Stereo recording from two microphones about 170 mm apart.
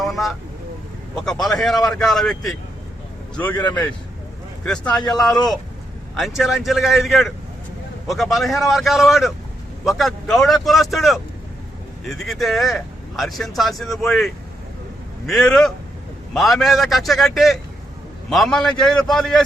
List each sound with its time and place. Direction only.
0.0 s vehicle: centre (ahead or behind)
1.1 s a man's voice: centre (ahead or behind)
4.6 s speech: 5° left (ahead or behind)